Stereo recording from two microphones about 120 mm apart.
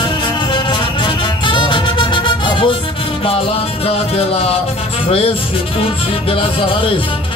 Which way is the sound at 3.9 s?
55° left (ahead or behind).